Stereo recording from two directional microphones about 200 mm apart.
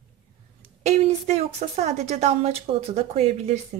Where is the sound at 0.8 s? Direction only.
30° right (ahead or behind).